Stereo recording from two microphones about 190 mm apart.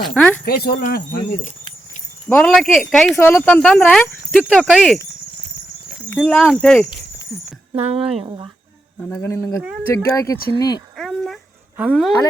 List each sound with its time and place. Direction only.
0.0 s speech: 5° left (ahead or behind)
0.4 s speech: 55° left (ahead or behind)
2.3 s speech: 5° left (ahead or behind)
6.1 s speech: 5° left (ahead or behind)
7.8 s speech: 30° right (ahead or behind)
9.0 s speech: 5° left (ahead or behind)
10.9 s a sound: centre (ahead or behind)
11.8 s speech: 5° right (ahead or behind)